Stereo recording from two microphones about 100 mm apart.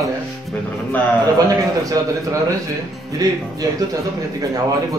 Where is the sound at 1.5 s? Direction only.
35° right (ahead or behind).